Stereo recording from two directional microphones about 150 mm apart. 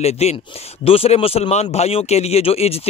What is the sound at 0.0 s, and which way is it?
A man's voice, 45° left (ahead or behind).